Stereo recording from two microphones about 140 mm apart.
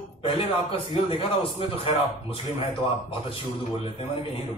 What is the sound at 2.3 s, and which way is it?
A man's voice, 40° left (ahead or behind).